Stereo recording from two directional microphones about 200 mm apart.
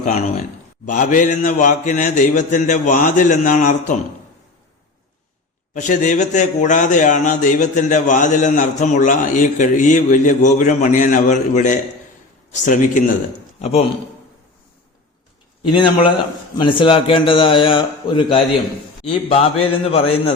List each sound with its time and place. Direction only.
0.0 s speech: 35° left (ahead or behind)
5.7 s speech: 40° left (ahead or behind)
15.7 s a man's voice: 25° left (ahead or behind)